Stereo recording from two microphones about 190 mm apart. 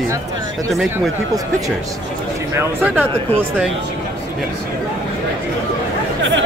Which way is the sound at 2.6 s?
10° right (ahead or behind).